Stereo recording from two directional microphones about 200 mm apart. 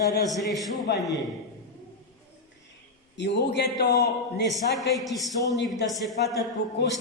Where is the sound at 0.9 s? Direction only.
55° left (ahead or behind).